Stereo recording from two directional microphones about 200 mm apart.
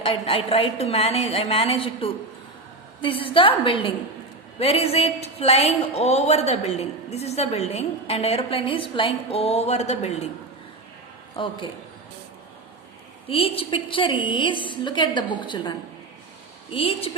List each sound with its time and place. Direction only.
0.0 s a woman's voice: 25° left (ahead or behind)
11.4 s a woman's voice: 25° left (ahead or behind)
13.2 s a woman's voice: 30° left (ahead or behind)
16.7 s a woman's voice: 30° left (ahead or behind)